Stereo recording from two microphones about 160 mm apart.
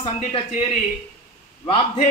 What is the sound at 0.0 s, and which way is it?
Speech, 35° left (ahead or behind).